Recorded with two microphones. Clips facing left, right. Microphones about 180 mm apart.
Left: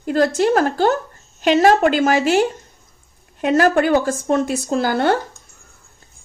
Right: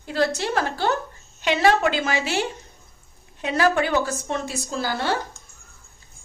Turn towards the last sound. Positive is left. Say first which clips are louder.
# left 8 dB
turn(degrees=55)  # may be behind; listen again after turning